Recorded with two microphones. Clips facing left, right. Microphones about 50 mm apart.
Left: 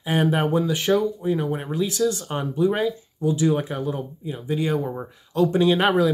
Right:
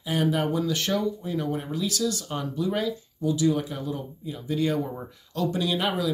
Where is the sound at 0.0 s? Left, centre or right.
Left.